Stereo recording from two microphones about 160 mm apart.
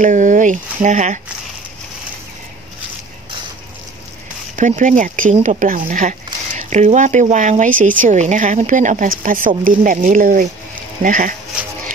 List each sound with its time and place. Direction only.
0.0 s speech: 55° right (ahead or behind)
4.6 s speech: 55° right (ahead or behind)